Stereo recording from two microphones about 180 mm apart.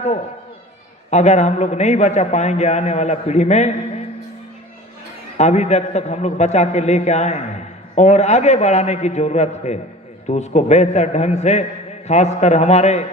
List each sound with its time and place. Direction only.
1.1 s a man's voice: 40° left (ahead or behind)
5.4 s a man's voice: 40° left (ahead or behind)